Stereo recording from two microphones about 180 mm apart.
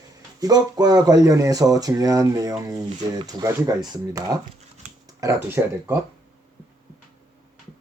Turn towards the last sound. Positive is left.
turn(degrees=-15)  # may be behind; listen again after turning